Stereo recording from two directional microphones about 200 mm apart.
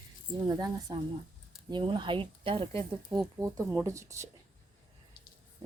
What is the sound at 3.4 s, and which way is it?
Speech, 15° right (ahead or behind).